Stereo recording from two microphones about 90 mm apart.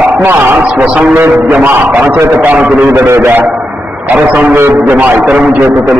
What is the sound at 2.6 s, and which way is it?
Speech, 15° right (ahead or behind).